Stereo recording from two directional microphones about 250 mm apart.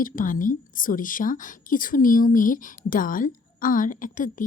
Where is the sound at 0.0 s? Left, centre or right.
Left.